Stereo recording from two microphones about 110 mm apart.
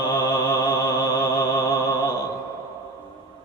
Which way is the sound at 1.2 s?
30° left (ahead or behind).